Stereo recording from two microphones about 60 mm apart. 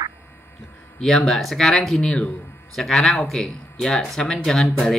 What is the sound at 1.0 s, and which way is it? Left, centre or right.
Speech, centre.